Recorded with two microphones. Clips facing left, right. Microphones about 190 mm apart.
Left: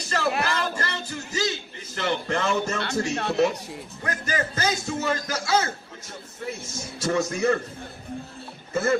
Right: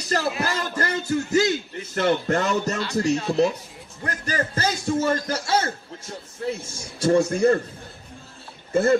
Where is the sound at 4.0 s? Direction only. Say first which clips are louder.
Right 1 dB; 35° right (ahead or behind).